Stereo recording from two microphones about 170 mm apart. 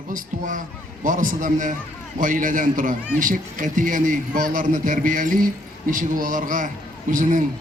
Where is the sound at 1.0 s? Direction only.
50° right (ahead or behind).